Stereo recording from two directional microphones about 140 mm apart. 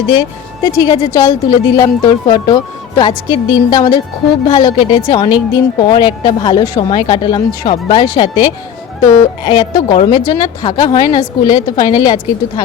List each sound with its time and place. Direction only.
0.1 s speech: 30° left (ahead or behind)